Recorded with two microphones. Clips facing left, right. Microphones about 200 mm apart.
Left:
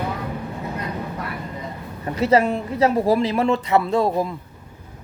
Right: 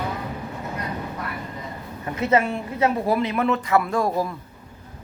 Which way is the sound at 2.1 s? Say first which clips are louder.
Left 3 dB; 35° left (ahead or behind).